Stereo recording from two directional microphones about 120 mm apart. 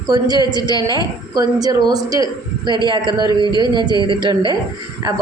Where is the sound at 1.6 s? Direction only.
30° right (ahead or behind).